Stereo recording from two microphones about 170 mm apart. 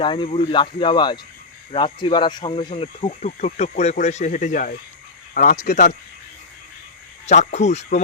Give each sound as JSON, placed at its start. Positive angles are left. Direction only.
{"t": 0.0, "sound": "speech", "side_deg": 30}
{"t": 7.3, "sound": "speech", "side_deg": 45}